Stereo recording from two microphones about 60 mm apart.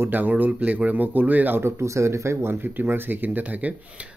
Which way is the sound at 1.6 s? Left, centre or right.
Right.